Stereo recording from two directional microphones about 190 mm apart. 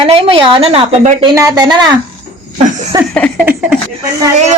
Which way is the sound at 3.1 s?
5° left (ahead or behind).